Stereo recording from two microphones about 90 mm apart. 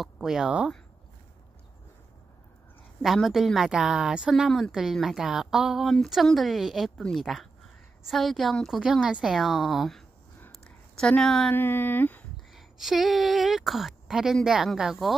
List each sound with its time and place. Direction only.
0.0 s a woman's voice: 5° right (ahead or behind)
3.0 s a woman's voice: centre (ahead or behind)
7.0 s a woman's voice: 10° left (ahead or behind)
11.5 s speech: 20° left (ahead or behind)
12.5 s a woman's voice: 5° right (ahead or behind)